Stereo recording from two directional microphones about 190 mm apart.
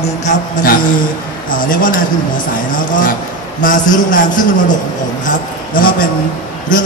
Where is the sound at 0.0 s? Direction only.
40° left (ahead or behind).